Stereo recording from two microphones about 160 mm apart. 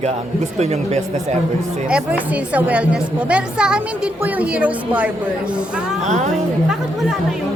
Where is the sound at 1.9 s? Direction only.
10° right (ahead or behind).